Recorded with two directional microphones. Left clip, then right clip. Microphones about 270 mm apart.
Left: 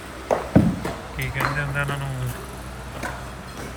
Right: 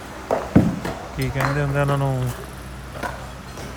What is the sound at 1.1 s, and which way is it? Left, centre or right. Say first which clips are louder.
Speech: right 1 dB; centre.